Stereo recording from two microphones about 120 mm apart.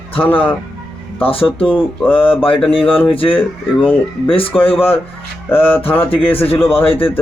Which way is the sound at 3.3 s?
15° left (ahead or behind).